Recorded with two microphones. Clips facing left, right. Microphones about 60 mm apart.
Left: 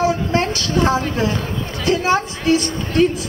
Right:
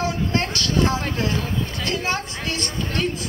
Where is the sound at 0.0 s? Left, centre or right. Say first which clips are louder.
Left 6 dB; centre.